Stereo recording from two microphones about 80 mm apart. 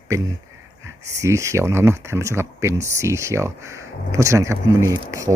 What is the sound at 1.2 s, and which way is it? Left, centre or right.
Speech, right.